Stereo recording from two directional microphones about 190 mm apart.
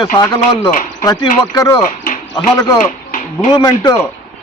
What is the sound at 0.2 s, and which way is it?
Speech, 20° left (ahead or behind).